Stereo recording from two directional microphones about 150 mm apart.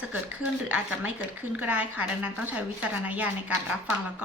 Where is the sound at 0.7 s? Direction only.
10° right (ahead or behind).